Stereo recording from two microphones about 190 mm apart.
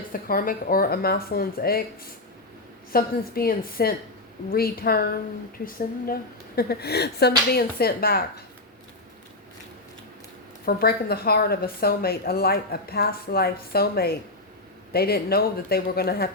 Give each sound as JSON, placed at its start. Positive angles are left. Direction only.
{"t": 0.1, "sound": "a woman's voice", "side_deg": 50}
{"t": 2.9, "sound": "a woman's voice", "side_deg": 50}
{"t": 6.6, "sound": "speech", "side_deg": 55}
{"t": 10.7, "sound": "a woman's voice", "side_deg": 55}